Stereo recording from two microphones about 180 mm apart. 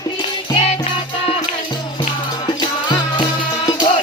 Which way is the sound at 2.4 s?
25° left (ahead or behind).